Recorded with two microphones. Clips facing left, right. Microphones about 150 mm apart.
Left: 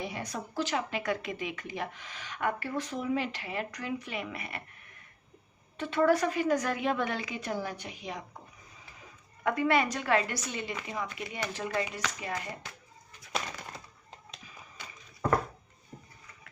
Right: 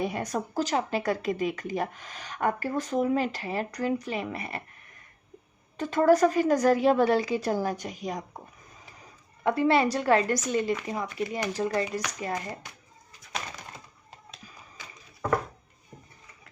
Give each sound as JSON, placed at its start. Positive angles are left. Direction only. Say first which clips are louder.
{"t": 0.0, "sound": "speech", "louder": "right 7 dB", "side_deg": -45}
{"t": 5.7, "sound": "speech", "louder": "right 4 dB", "side_deg": -40}
{"t": 9.4, "sound": "speech", "louder": "right 4 dB", "side_deg": -30}